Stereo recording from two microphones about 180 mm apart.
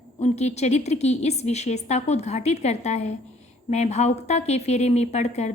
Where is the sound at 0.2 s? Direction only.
40° left (ahead or behind).